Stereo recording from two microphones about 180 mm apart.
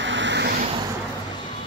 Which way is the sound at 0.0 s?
90° right.